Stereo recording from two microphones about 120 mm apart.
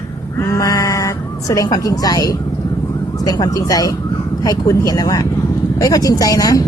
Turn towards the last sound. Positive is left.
turn(degrees=30)  # may be behind; listen again after turning